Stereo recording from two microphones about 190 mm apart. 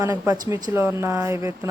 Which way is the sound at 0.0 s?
15° right (ahead or behind).